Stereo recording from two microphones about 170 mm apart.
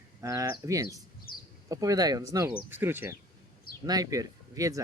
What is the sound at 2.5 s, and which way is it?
Speech, 10° right (ahead or behind).